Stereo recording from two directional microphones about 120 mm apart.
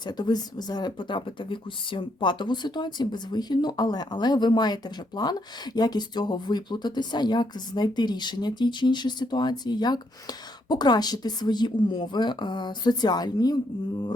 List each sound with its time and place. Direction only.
0.0 s speech: 35° left (ahead or behind)